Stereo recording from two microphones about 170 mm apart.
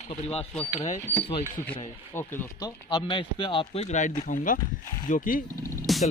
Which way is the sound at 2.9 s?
30° left (ahead or behind).